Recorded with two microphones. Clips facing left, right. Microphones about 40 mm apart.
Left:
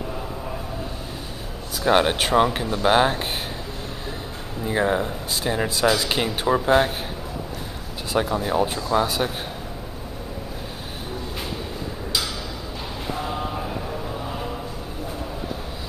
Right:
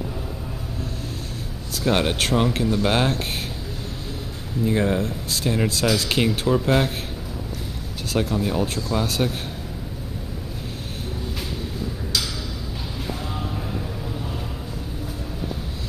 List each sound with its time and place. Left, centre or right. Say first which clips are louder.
1.8 s speech: left 3 dB; centre
4.6 s speech: even; centre
8.1 s speech: left 1 dB; centre